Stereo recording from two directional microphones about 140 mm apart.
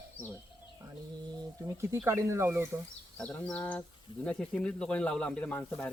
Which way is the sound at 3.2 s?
10° left (ahead or behind).